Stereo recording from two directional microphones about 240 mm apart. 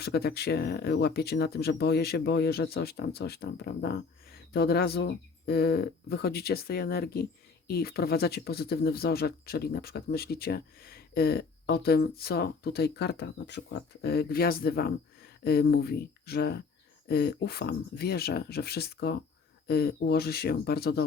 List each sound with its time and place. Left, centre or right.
0.0 s speech: left